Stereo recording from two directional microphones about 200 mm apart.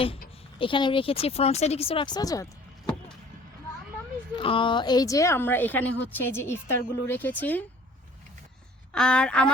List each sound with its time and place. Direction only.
0.6 s speech: 25° left (ahead or behind)
4.4 s a woman's voice: 25° left (ahead or behind); by 7.6 s 10° left (ahead or behind)
8.9 s speech: 5° left (ahead or behind)